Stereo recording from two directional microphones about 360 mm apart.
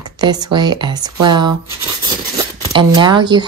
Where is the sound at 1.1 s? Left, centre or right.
Right.